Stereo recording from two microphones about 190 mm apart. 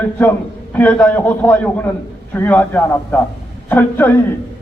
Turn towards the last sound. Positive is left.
turn(degrees=10)  # may be behind; listen again after turning